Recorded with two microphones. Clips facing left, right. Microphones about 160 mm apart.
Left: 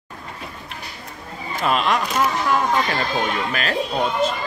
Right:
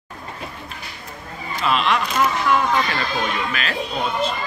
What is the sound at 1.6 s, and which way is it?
Speech, 45° left (ahead or behind).